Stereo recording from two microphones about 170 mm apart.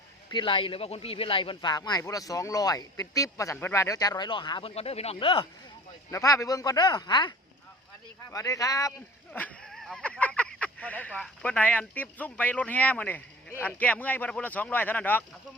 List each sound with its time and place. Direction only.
0.3 s speech: 30° left (ahead or behind)
6.1 s speech: 20° left (ahead or behind)
9.3 s speech: 5° left (ahead or behind)